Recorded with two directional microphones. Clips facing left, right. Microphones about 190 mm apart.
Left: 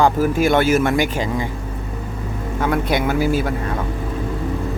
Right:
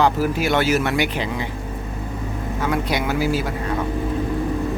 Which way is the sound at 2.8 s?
50° left (ahead or behind).